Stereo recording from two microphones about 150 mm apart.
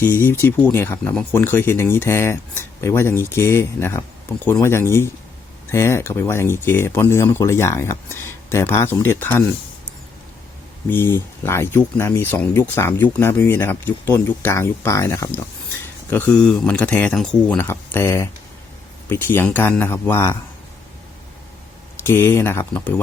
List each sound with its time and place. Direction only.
0.0 s speech: 15° left (ahead or behind)
10.8 s speech: 15° left (ahead or behind)
17.6 s speech: 15° left (ahead or behind)
22.0 s speech: 15° left (ahead or behind)